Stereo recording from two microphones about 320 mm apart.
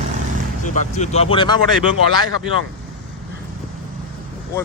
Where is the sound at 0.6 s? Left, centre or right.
Left.